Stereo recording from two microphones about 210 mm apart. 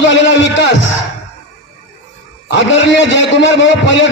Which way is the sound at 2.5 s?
60° left (ahead or behind).